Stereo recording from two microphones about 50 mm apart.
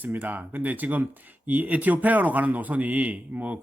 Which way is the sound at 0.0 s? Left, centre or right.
Right.